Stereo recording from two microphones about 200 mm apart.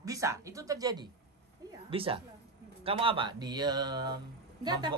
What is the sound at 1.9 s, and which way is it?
Speech, 25° right (ahead or behind).